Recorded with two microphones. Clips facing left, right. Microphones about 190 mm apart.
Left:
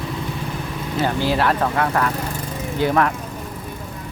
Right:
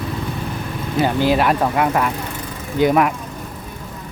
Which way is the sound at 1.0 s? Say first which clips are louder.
Right 4 dB; 15° right (ahead or behind).